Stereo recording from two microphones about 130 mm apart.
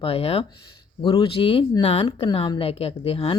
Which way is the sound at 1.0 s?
40° left (ahead or behind).